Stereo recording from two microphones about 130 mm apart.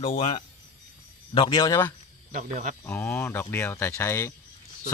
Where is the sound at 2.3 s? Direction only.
75° right (ahead or behind).